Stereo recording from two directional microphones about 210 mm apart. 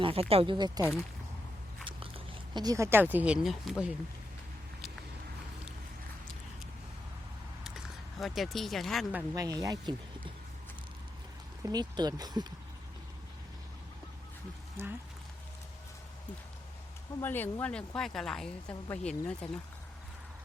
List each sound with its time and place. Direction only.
0.0 s speech: 25° right (ahead or behind); by 3.9 s 5° right (ahead or behind)
7.6 s speech: centre (ahead or behind)
9.3 s speech: 15° right (ahead or behind)
11.6 s speech: 20° right (ahead or behind)
14.8 s speech: 10° right (ahead or behind)
17.2 s a woman's voice: 10° left (ahead or behind)